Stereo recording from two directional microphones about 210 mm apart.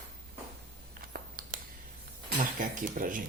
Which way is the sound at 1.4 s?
40° right (ahead or behind).